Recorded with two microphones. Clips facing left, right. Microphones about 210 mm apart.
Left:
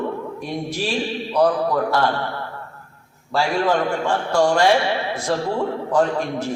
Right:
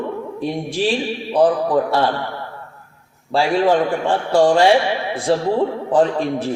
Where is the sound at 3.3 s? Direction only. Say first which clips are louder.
Right 4 dB; 30° right (ahead or behind).